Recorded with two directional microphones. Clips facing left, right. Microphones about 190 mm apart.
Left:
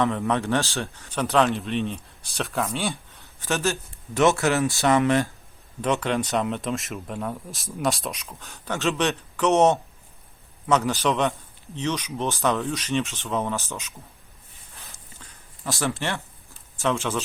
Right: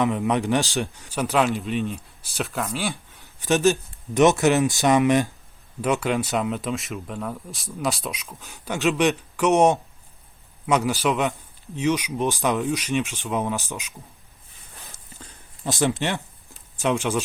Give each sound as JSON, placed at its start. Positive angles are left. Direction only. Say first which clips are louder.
{"t": 0.0, "sound": "speech", "louder": "right 1 dB", "side_deg": -15}
{"t": 3.4, "sound": "a man's voice", "louder": "right 6 dB", "side_deg": -15}
{"t": 8.4, "sound": "a man's voice", "louder": "right 3 dB", "side_deg": -15}
{"t": 15.6, "sound": "speech", "louder": "right 4 dB", "side_deg": -20}